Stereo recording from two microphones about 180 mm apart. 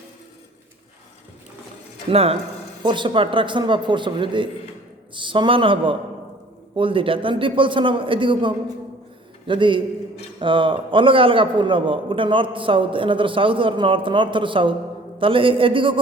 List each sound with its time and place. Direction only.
2.0 s a man's voice: 35° right (ahead or behind)